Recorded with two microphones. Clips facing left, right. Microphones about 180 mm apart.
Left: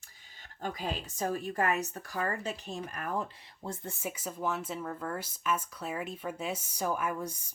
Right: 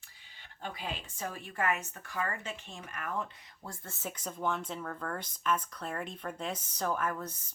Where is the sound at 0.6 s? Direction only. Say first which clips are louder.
Left 4 dB; 40° left (ahead or behind).